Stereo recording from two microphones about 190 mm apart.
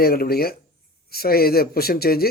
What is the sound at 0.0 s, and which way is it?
A man's voice, 55° left (ahead or behind).